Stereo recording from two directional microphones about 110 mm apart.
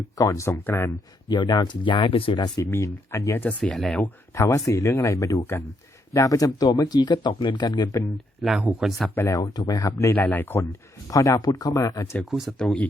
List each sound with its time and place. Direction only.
0.2 s speech: 30° left (ahead or behind)
0.5 s speech: 20° left (ahead or behind)
1.3 s speech: 40° left (ahead or behind)
2.6 s speech: 25° left (ahead or behind)
3.6 s speech: 5° left (ahead or behind)
4.4 s speech: 25° left (ahead or behind)
8.8 s speech: centre (ahead or behind)
9.0 s speech: 25° left (ahead or behind)
10.2 s speech: 15° left (ahead or behind)
11.1 s speech: 30° left (ahead or behind)
12.2 s speech: centre (ahead or behind)